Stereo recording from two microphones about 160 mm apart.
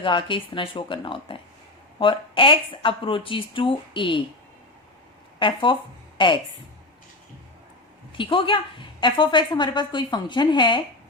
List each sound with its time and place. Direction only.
0.0 s speech: 30° left (ahead or behind)
5.4 s a woman's voice: 30° left (ahead or behind)
8.1 s a woman's voice: 30° left (ahead or behind)